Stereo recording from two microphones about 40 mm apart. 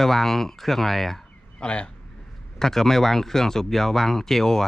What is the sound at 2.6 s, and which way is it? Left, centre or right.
Speech, centre.